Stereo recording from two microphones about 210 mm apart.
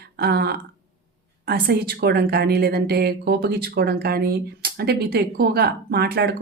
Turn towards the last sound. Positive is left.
turn(degrees=-50)  # may be behind; listen again after turning